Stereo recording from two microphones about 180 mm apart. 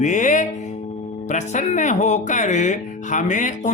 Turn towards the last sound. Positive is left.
turn(degrees=45)  # may be behind; listen again after turning